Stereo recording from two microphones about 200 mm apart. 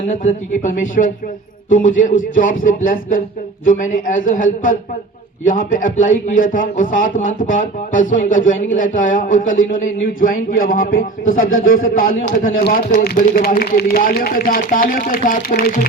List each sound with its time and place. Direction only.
0.1 s speech: 40° left (ahead or behind)
5.5 s speech: 40° left (ahead or behind)